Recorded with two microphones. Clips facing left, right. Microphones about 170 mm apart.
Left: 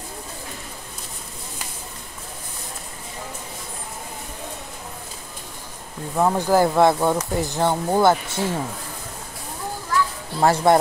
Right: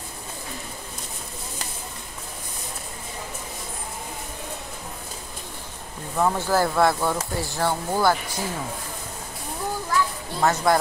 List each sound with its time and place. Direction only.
6.1 s speech: 15° left (ahead or behind)
10.4 s speech: 30° left (ahead or behind)